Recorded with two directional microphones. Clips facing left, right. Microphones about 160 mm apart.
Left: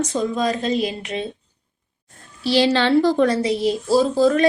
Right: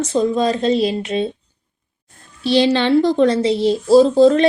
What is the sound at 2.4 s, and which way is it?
Speech, 20° right (ahead or behind).